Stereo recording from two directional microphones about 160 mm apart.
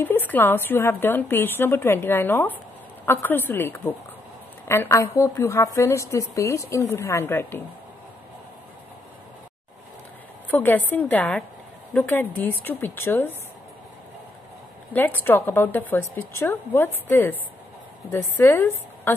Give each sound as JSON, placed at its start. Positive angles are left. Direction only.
{"t": 0.0, "sound": "a woman's voice", "side_deg": 15}
{"t": 10.5, "sound": "a woman's voice", "side_deg": 10}
{"t": 14.9, "sound": "a woman's voice", "side_deg": 10}